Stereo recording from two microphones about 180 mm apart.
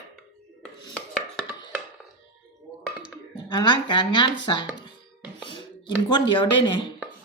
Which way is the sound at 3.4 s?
25° left (ahead or behind).